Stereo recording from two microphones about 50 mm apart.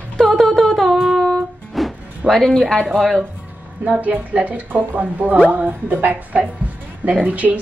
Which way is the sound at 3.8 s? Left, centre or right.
Right.